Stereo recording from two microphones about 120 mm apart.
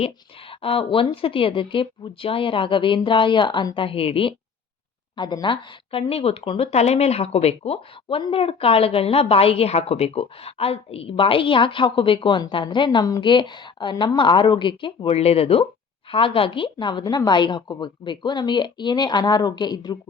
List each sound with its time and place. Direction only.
0.6 s a woman's voice: 45° left (ahead or behind)
5.1 s a woman's voice: 40° left (ahead or behind)